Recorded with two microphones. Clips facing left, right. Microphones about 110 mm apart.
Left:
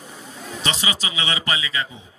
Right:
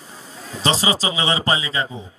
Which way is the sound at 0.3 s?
35° right (ahead or behind).